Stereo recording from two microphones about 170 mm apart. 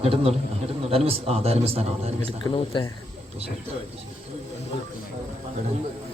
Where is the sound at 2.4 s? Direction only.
25° left (ahead or behind).